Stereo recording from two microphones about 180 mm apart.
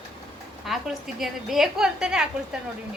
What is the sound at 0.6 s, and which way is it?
A woman's voice, centre (ahead or behind).